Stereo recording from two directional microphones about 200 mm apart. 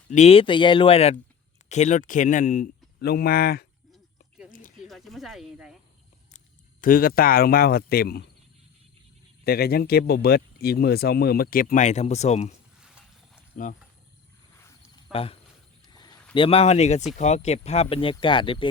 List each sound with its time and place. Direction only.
0.1 s speech: 30° left (ahead or behind); by 3.7 s 50° left (ahead or behind)
3.9 s a sound: 5° right (ahead or behind)
4.8 s speech: centre (ahead or behind)
6.8 s speech: 45° left (ahead or behind)
9.4 s speech: 50° left (ahead or behind); by 12.5 s 35° left (ahead or behind)
12.8 s a sound: 5° right (ahead or behind)
15.1 s speech: 30° left (ahead or behind)
15.9 s a sound: 20° left (ahead or behind)
16.3 s speech: 25° left (ahead or behind)